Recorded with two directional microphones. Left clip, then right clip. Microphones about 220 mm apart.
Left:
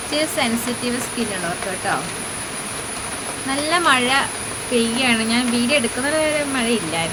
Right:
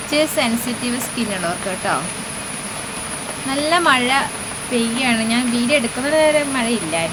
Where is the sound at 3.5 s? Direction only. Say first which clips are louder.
Right 2 dB; 5° right (ahead or behind).